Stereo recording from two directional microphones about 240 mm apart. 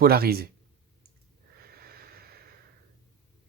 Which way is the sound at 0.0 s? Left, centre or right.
Right.